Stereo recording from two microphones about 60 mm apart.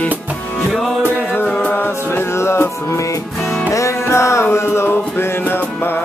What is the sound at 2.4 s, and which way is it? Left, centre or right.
Music, left.